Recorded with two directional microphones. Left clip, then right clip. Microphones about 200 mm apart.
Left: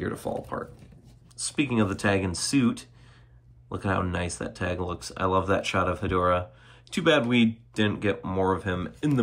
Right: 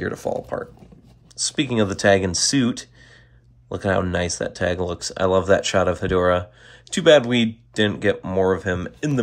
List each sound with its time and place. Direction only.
0.0 s speech: 15° right (ahead or behind)